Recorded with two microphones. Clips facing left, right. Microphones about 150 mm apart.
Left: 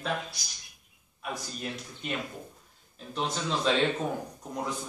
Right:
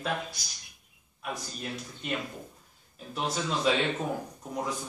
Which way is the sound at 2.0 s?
Centre (ahead or behind).